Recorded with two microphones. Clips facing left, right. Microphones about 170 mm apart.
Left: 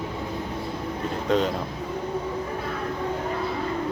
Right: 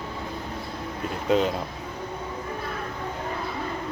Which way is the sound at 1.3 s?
5° right (ahead or behind).